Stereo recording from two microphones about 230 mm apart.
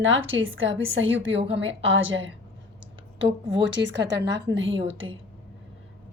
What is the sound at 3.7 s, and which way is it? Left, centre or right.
A woman's voice, right.